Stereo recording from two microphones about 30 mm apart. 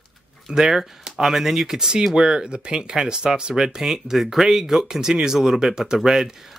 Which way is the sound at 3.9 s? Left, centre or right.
Centre.